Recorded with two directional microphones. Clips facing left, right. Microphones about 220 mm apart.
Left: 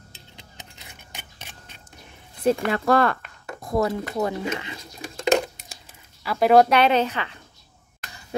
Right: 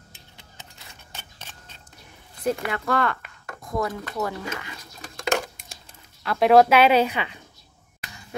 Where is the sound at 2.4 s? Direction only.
35° left (ahead or behind).